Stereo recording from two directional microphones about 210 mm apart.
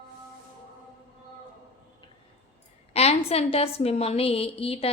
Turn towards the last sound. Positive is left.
turn(degrees=25)  # may be behind; listen again after turning